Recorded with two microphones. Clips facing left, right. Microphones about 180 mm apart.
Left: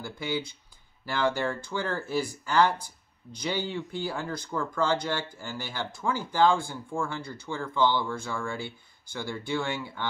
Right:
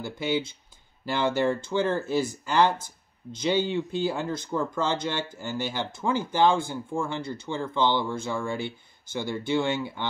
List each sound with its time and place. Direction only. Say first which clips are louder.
0.0 s speech: right 4 dB; 20° right (ahead or behind)